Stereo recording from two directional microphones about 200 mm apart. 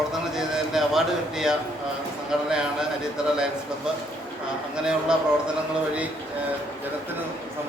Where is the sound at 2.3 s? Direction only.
5° right (ahead or behind).